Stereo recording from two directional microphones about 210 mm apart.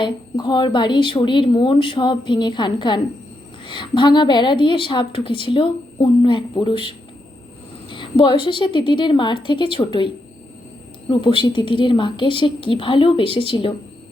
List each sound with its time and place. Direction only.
0.0 s a woman's voice: 20° left (ahead or behind)
11.1 s a woman's voice: 25° left (ahead or behind)